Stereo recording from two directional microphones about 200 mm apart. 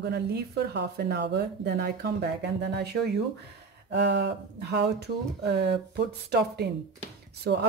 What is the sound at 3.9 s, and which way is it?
A woman's voice, 60° right (ahead or behind).